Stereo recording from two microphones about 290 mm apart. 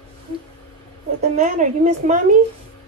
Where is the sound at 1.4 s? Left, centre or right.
Right.